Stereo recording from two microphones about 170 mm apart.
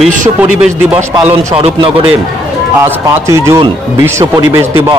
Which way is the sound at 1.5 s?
35° right (ahead or behind).